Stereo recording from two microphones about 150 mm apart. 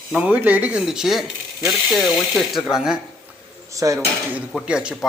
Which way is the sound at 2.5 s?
Centre (ahead or behind).